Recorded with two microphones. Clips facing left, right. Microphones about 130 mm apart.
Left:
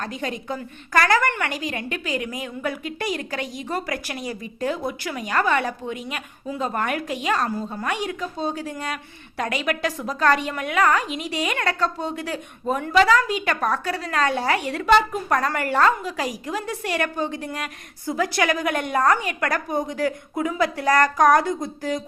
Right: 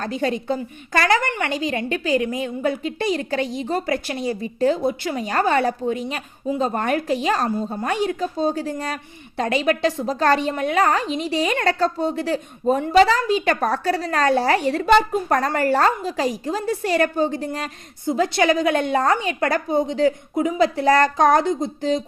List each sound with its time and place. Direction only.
0.0 s a woman's voice: 30° right (ahead or behind)